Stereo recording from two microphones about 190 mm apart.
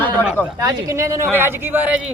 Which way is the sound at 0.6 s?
15° right (ahead or behind).